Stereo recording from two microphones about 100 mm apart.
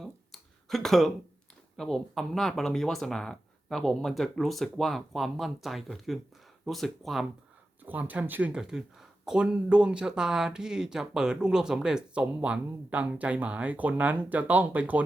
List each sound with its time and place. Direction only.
0.0 s a sound: centre (ahead or behind)
1.7 s speech: 5° left (ahead or behind)
7.9 s speech: 15° right (ahead or behind)